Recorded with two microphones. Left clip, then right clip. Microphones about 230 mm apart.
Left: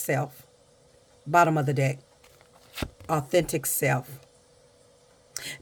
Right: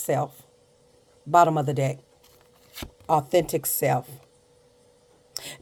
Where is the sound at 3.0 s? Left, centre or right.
Left.